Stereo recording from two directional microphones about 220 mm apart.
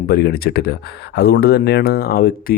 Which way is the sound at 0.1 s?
45° left (ahead or behind).